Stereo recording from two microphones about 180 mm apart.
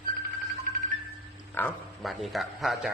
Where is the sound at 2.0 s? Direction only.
Centre (ahead or behind).